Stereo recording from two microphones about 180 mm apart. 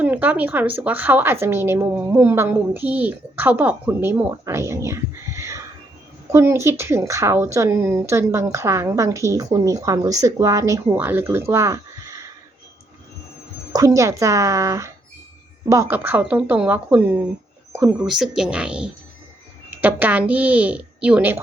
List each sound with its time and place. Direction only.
0.0 s a woman's voice: 10° right (ahead or behind)
13.7 s a woman's voice: 15° right (ahead or behind)